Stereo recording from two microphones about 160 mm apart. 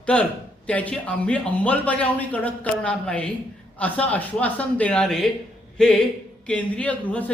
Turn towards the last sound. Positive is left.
turn(degrees=10)  # may be behind; listen again after turning